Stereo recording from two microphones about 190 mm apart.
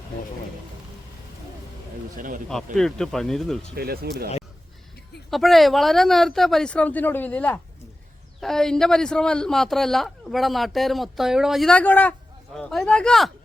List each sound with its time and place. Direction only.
2.1 s speech: 45° right (ahead or behind)
2.7 s a man's voice: centre (ahead or behind)
3.8 s speech: 55° right (ahead or behind)
5.3 s a man's voice: centre (ahead or behind)